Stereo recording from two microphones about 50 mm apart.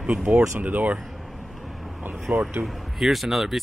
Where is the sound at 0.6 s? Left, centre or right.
Right.